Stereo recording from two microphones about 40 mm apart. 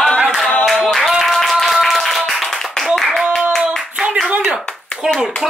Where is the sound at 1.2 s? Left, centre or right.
Centre.